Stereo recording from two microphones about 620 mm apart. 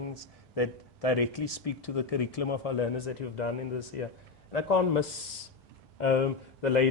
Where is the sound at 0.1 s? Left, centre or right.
Left.